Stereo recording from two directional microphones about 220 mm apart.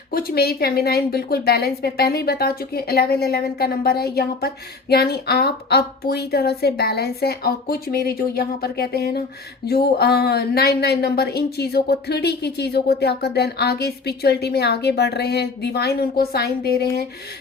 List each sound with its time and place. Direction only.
0.1 s a woman's voice: 45° left (ahead or behind)